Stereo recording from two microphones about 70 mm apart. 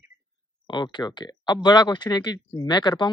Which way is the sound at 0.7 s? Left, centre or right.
Left.